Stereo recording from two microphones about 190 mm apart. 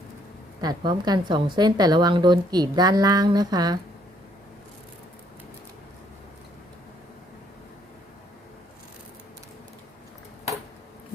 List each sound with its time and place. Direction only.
0.6 s a woman's voice: 20° right (ahead or behind)